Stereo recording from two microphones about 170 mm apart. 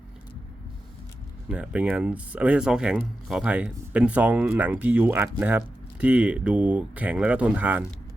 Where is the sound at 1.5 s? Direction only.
10° right (ahead or behind).